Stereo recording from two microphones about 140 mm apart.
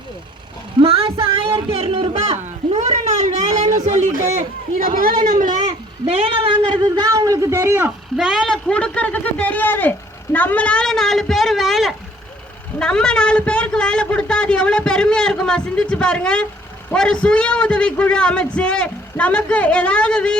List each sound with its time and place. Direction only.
0.8 s a sound: 40° right (ahead or behind)
3.8 s speech: 60° right (ahead or behind)
6.1 s a man's voice: 40° right (ahead or behind); by 7.9 s 15° right (ahead or behind)
8.1 s a man's voice: centre (ahead or behind)
10.3 s a sound: 10° left (ahead or behind)
12.8 s a man's voice: 5° left (ahead or behind)